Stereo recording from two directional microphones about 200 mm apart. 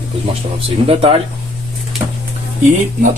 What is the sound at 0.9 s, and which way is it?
Speech, 30° right (ahead or behind).